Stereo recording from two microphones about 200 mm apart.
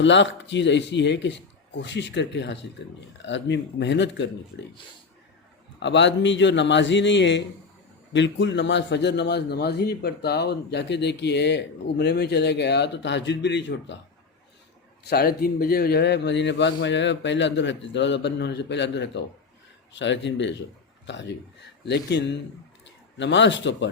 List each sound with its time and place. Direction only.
0.0 s a man's voice: 65° left (ahead or behind)
5.8 s a man's voice: 60° left (ahead or behind)
15.0 s a man's voice: 50° left (ahead or behind)